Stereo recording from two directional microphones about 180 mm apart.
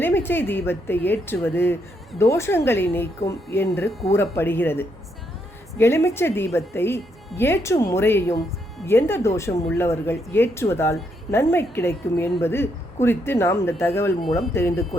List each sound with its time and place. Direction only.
0.0 s speech: 10° left (ahead or behind)